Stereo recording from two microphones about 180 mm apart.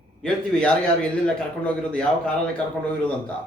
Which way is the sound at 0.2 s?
5° left (ahead or behind).